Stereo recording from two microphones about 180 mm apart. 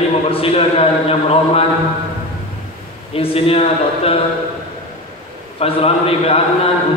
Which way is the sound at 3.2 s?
30° left (ahead or behind).